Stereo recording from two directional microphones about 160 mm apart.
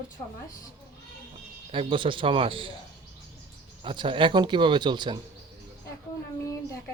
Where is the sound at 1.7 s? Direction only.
30° right (ahead or behind).